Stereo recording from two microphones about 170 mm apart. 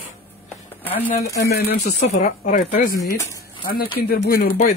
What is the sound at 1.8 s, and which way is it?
Speech, 45° left (ahead or behind).